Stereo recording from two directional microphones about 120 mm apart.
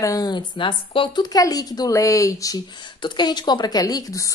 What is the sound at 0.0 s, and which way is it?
A woman's voice, 30° left (ahead or behind).